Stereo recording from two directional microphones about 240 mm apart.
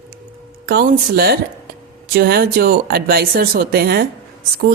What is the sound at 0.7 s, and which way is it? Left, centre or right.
A woman's voice, right.